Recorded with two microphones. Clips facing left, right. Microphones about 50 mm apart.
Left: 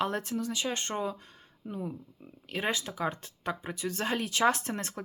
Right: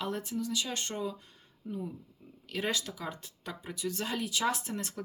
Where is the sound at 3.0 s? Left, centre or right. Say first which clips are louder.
Left 7 dB; left.